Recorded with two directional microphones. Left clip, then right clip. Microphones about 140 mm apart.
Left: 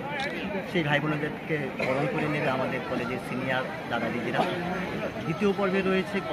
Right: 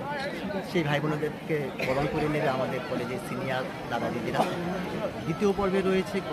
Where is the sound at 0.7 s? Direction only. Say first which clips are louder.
Left 2 dB; 35° right (ahead or behind).